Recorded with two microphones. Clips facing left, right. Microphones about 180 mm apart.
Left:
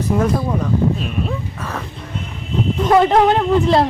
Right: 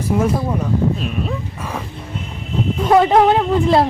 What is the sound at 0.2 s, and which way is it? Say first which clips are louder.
Speech: even; 10° right (ahead or behind).